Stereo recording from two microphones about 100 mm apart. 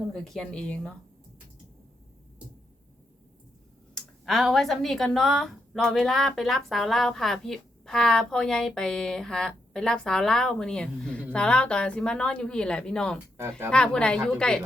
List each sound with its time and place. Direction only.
0.1 s a woman's voice: 5° left (ahead or behind)
3.9 s a woman's voice: centre (ahead or behind)
13.3 s speech: 25° right (ahead or behind)
13.7 s a woman's voice: 10° left (ahead or behind)